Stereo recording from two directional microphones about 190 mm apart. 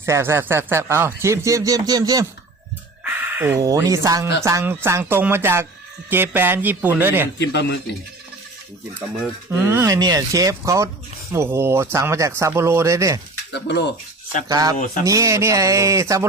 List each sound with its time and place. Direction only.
0.0 s speech: 15° right (ahead or behind)
7.3 s a man's voice: 65° left (ahead or behind)
9.5 s speech: 15° right (ahead or behind)
13.5 s a man's voice: 65° left (ahead or behind)
14.4 s speech: 20° right (ahead or behind)